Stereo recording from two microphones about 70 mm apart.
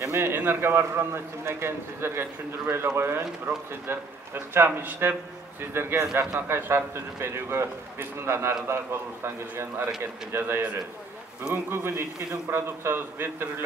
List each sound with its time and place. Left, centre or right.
0.0 s a man's voice: right